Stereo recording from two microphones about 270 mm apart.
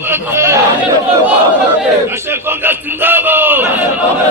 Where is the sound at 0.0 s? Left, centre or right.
Centre.